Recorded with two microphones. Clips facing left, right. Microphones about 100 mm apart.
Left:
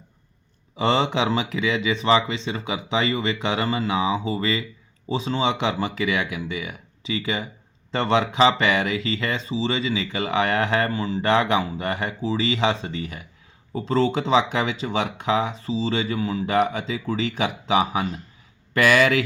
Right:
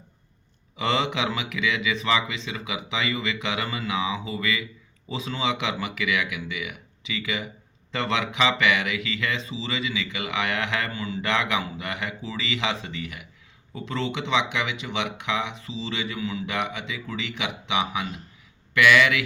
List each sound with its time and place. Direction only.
0.8 s speech: 30° left (ahead or behind)